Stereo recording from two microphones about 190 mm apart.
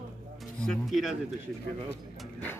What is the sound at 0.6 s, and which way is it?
Speech, centre (ahead or behind).